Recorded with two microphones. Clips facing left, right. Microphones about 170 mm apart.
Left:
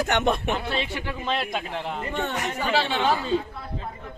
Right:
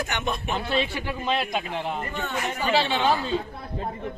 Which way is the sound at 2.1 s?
70° left (ahead or behind).